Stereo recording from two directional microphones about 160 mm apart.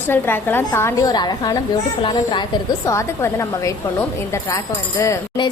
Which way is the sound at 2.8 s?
20° left (ahead or behind).